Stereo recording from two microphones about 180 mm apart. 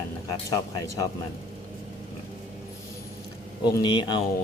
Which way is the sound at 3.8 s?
25° left (ahead or behind).